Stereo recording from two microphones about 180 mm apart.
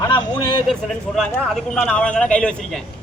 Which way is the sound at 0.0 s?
20° left (ahead or behind).